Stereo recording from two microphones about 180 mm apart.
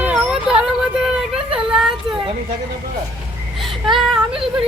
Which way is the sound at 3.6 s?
Centre (ahead or behind).